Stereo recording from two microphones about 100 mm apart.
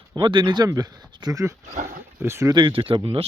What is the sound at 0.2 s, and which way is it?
Speech, 55° right (ahead or behind).